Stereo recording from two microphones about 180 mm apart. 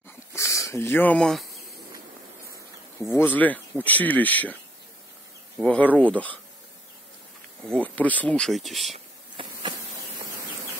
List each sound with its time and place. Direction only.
0.3 s a sound: 15° left (ahead or behind)
3.0 s speech: 15° left (ahead or behind)
5.6 s speech: 5° left (ahead or behind)
7.7 s speech: 10° left (ahead or behind)
8.9 s insect: 30° right (ahead or behind)